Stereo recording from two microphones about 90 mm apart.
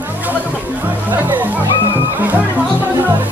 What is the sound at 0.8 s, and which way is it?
Music, 20° right (ahead or behind).